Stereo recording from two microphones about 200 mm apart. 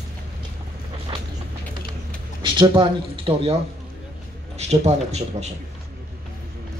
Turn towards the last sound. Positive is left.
turn(degrees=-35)  # may be behind; listen again after turning